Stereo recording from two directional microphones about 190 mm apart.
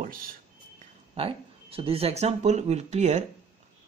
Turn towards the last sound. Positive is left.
turn(degrees=-35)  # may be behind; listen again after turning